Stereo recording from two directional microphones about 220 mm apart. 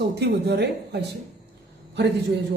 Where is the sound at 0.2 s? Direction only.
50° right (ahead or behind).